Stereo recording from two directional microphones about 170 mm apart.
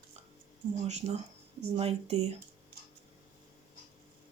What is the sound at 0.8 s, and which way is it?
Speech, 40° right (ahead or behind).